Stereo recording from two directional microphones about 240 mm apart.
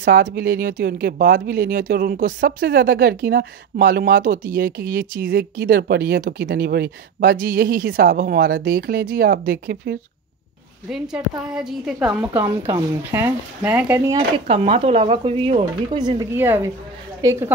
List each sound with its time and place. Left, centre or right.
0.0 s speech: right
10.9 s a woman's voice: centre